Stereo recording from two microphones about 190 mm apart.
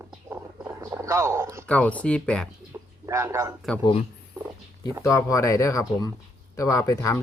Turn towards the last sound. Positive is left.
turn(degrees=15)  # may be behind; listen again after turning